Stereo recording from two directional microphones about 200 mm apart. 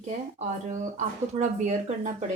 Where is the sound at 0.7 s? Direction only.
35° right (ahead or behind).